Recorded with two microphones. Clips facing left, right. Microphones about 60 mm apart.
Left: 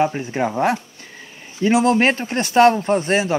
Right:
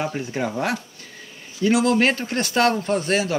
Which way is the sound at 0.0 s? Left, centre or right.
Left.